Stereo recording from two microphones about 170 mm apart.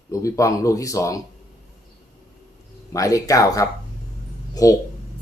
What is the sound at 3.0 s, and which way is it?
Speech, 20° left (ahead or behind).